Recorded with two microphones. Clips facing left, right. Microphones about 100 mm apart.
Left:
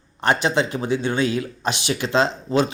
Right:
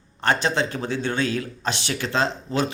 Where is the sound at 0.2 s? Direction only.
15° left (ahead or behind).